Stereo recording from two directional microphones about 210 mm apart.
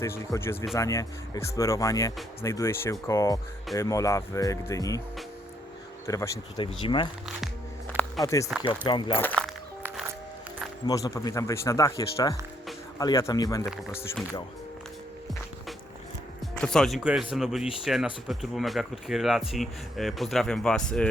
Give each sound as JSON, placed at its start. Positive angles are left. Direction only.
{"t": 0.0, "sound": "speech", "side_deg": 10}
{"t": 6.1, "sound": "speech", "side_deg": 15}
{"t": 8.2, "sound": "speech", "side_deg": 15}
{"t": 9.2, "sound": "speech", "side_deg": 5}
{"t": 10.8, "sound": "speech", "side_deg": 15}
{"t": 16.6, "sound": "speech", "side_deg": 5}